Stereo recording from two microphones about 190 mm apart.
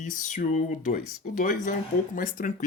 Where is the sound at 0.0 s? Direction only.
45° left (ahead or behind).